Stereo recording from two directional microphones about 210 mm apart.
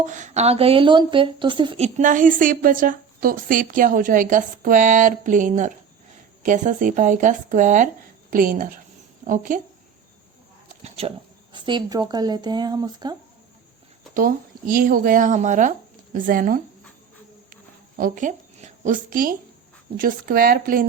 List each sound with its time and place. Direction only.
0.0 s a woman's voice: 35° right (ahead or behind)
10.8 s speech: 30° right (ahead or behind)
14.1 s a woman's voice: 40° right (ahead or behind)
17.5 s a sound: 40° right (ahead or behind)
20.0 s a woman's voice: 40° right (ahead or behind)